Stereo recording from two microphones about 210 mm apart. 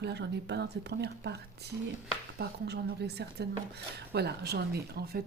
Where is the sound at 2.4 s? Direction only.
50° right (ahead or behind).